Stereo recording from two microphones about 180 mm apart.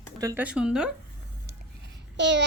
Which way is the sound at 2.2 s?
80° right.